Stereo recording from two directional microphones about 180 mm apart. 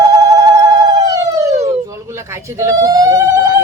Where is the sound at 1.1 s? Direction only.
20° right (ahead or behind).